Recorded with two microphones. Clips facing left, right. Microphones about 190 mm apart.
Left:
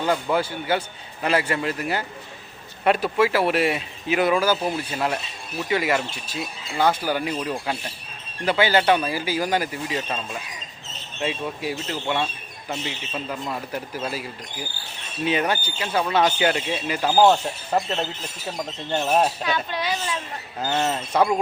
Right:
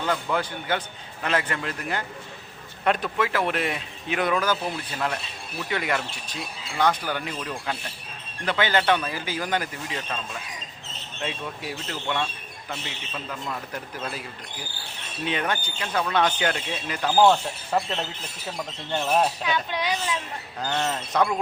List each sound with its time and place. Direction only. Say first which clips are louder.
0.1 s speech: left 4 dB; 10° left (ahead or behind)
11.2 s speech: left 5 dB; 5° left (ahead or behind)
17.2 s speech: left 2 dB; 20° left (ahead or behind)
18.9 s speech: left 2 dB; 20° left (ahead or behind)
19.7 s speech: even; 15° right (ahead or behind)
20.6 s speech: left 3 dB; 5° left (ahead or behind)